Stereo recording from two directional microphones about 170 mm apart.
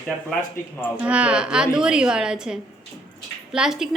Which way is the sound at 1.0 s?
5° right (ahead or behind).